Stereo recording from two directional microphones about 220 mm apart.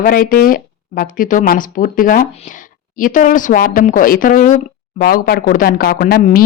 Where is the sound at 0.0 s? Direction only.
40° left (ahead or behind).